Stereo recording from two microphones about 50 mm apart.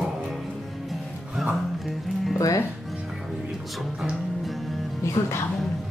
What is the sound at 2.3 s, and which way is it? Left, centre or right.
Speech, left.